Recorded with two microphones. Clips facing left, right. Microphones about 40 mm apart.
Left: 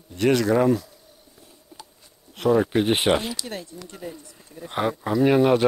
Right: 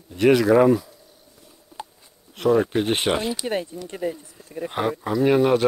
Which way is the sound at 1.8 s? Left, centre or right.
Right.